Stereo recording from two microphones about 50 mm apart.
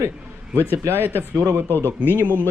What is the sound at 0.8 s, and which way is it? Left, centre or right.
Speech, right.